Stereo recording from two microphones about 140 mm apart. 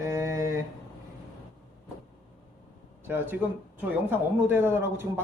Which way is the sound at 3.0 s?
15° right (ahead or behind).